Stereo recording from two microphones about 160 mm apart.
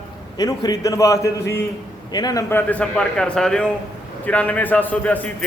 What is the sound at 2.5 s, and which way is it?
A man's voice, 10° left (ahead or behind).